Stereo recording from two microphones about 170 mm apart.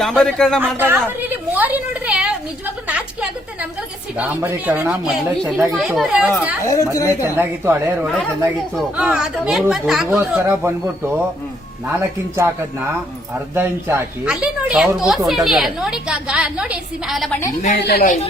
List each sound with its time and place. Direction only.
0.0 s a woman's voice: 5° left (ahead or behind)
0.8 s a sound: 10° right (ahead or behind)
4.4 s a child's voice: 10° right (ahead or behind)
6.6 s speech: 20° left (ahead or behind)
7.2 s a child's voice: 15° right (ahead or behind)
8.0 s a woman's voice: centre (ahead or behind)
10.2 s a child's voice: 15° right (ahead or behind)
12.4 s a child's voice: 15° right (ahead or behind)
17.7 s a woman's voice: 70° left (ahead or behind)